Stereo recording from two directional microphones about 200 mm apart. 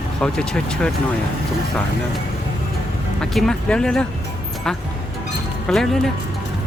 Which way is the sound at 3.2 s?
Centre (ahead or behind).